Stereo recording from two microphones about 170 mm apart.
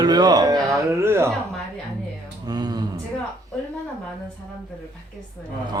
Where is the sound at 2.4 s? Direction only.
25° right (ahead or behind).